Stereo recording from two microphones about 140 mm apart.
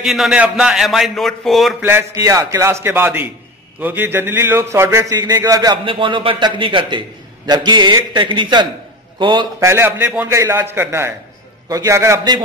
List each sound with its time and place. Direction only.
0.0 s a man's voice: centre (ahead or behind)
1.8 s a man's voice: 15° right (ahead or behind)
5.9 s a man's voice: 35° right (ahead or behind)
9.7 s a man's voice: 15° right (ahead or behind)